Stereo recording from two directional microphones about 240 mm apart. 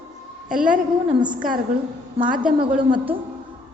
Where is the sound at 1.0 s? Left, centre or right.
Centre.